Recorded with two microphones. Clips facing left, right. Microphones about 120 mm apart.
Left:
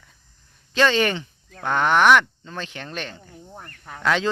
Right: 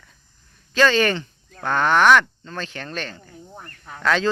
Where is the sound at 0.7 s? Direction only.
20° left (ahead or behind).